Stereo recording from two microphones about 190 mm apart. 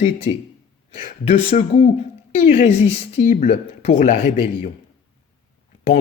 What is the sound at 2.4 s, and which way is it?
A woman's voice, 40° left (ahead or behind).